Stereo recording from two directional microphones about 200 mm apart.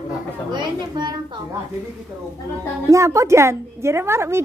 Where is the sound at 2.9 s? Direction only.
15° right (ahead or behind).